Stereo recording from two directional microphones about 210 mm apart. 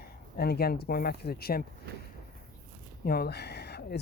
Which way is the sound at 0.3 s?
50° left (ahead or behind).